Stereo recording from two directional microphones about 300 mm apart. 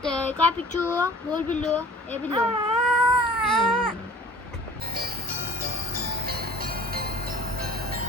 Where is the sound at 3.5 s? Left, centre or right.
Centre.